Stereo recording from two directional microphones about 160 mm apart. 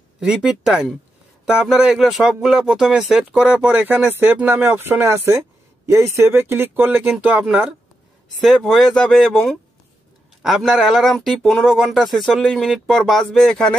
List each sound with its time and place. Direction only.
0.2 s speech: 5° right (ahead or behind)